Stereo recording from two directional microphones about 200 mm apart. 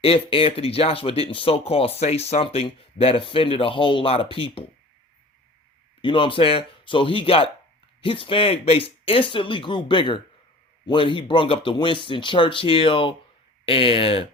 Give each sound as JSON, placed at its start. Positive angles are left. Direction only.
{"t": 0.0, "sound": "speech", "side_deg": 30}
{"t": 6.0, "sound": "speech", "side_deg": 25}